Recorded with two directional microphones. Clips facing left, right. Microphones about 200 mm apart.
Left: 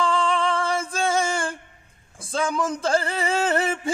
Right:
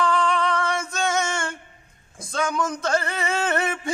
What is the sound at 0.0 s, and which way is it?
Female singing, 30° left (ahead or behind).